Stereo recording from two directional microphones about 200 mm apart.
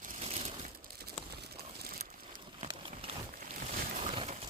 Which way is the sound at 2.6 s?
25° right (ahead or behind).